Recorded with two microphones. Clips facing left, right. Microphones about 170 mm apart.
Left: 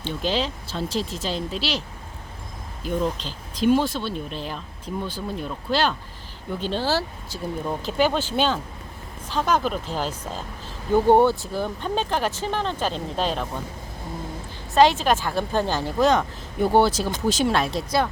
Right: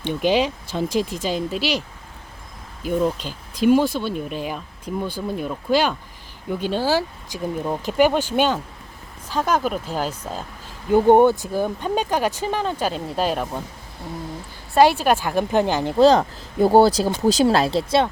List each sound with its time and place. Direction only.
0.0 s speech: 15° right (ahead or behind)
2.8 s speech: 10° right (ahead or behind)
14.8 s speech: 10° right (ahead or behind)
16.0 s speech: 35° right (ahead or behind)